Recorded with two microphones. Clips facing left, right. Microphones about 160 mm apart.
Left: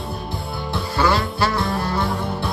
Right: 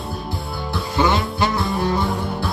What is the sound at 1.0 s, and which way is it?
Music, 20° right (ahead or behind).